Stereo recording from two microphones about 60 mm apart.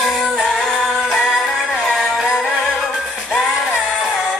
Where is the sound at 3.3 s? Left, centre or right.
Centre.